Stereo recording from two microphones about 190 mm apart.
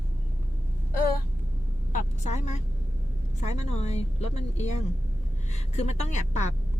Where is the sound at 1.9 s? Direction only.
40° left (ahead or behind).